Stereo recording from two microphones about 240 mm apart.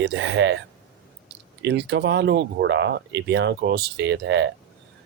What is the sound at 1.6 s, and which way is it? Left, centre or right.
Speech, right.